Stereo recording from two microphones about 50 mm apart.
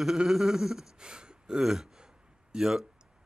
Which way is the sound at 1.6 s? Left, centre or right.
Centre.